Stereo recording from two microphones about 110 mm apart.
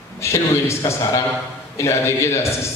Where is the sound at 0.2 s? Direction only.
25° left (ahead or behind).